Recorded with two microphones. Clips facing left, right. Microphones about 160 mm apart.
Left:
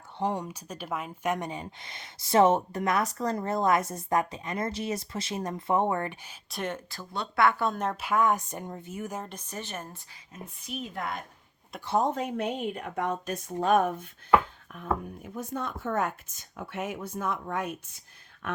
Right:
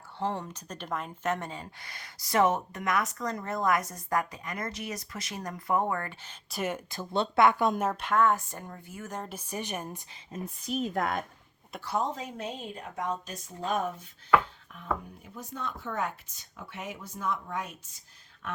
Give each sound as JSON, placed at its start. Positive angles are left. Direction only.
{"t": 0.2, "sound": "speech", "side_deg": 15}
{"t": 6.5, "sound": "speech", "side_deg": -5}
{"t": 6.9, "sound": "speech", "side_deg": -20}
{"t": 7.9, "sound": "speech", "side_deg": 5}
{"t": 9.0, "sound": "speech", "side_deg": 5}
{"t": 9.3, "sound": "speech", "side_deg": -10}
{"t": 10.7, "sound": "a woman's voice", "side_deg": -45}
{"t": 11.9, "sound": "a woman's voice", "side_deg": 55}